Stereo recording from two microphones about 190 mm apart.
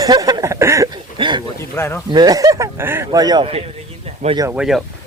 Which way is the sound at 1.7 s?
10° left (ahead or behind).